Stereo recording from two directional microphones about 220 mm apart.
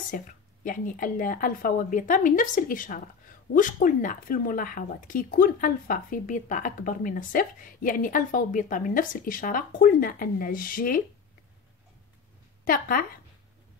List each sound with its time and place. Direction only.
0.1 s speech: 40° left (ahead or behind)
12.6 s speech: 40° left (ahead or behind)